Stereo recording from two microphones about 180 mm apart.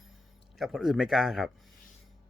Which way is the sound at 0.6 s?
Centre (ahead or behind).